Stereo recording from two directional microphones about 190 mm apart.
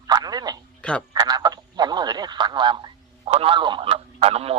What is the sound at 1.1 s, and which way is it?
Speech, 20° right (ahead or behind).